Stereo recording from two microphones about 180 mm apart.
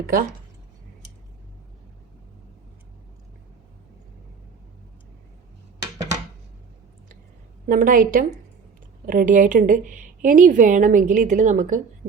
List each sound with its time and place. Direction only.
0.0 s a woman's voice: 55° right (ahead or behind)
7.7 s a woman's voice: 50° right (ahead or behind)